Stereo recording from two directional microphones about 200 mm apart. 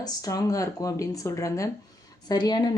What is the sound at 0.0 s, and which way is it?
A woman's voice, 20° left (ahead or behind).